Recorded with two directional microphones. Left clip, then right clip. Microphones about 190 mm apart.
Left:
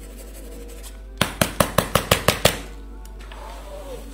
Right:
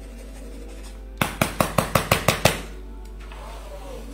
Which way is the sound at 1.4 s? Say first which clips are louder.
Left 2 dB; 45° left (ahead or behind).